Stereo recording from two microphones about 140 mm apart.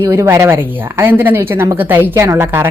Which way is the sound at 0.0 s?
20° right (ahead or behind).